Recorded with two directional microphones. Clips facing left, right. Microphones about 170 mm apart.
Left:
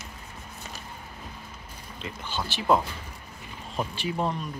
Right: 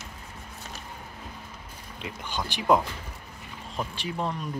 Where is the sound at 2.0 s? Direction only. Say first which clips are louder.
Even; 15° right (ahead or behind).